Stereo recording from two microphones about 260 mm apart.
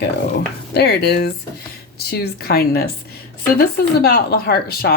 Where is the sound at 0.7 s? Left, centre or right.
Left.